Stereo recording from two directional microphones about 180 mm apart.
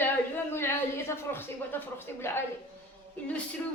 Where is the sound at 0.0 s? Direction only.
15° left (ahead or behind).